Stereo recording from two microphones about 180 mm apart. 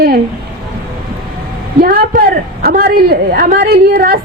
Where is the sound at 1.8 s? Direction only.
55° right (ahead or behind).